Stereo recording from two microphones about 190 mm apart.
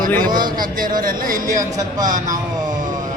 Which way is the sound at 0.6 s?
45° right (ahead or behind).